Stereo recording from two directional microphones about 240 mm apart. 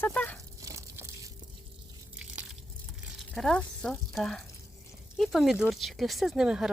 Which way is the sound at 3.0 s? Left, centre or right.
Centre.